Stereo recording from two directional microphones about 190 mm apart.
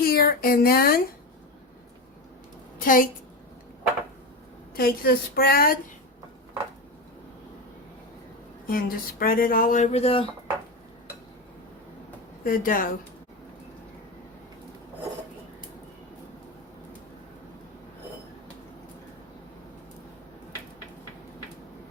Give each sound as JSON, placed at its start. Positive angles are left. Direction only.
{"t": 0.0, "sound": "speech", "side_deg": 50}
{"t": 2.7, "sound": "a woman's voice", "side_deg": 45}
{"t": 4.7, "sound": "speech", "side_deg": 50}
{"t": 8.6, "sound": "speech", "side_deg": 50}
{"t": 12.5, "sound": "speech", "side_deg": 45}